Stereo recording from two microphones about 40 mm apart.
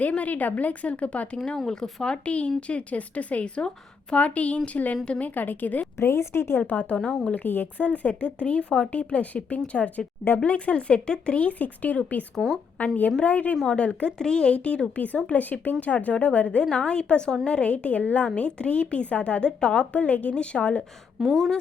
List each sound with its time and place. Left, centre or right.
0.1 s a woman's voice: left
1.5 s speech: centre
2.2 s a woman's voice: left
6.1 s a woman's voice: left
6.6 s a woman's voice: left
7.3 s a woman's voice: left
7.8 s a woman's voice: left
9.6 s a woman's voice: left
14.9 s a woman's voice: left
20.3 s a woman's voice: left
21.2 s speech: centre